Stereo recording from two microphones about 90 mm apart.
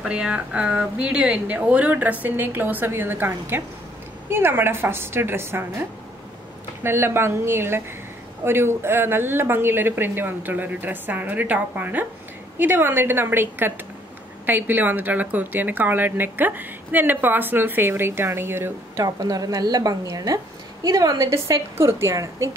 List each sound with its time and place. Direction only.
0.0 s a woman's voice: 10° right (ahead or behind); by 5.7 s 25° right (ahead or behind)
6.8 s a woman's voice: 25° right (ahead or behind)
19.0 s a woman's voice: 45° right (ahead or behind)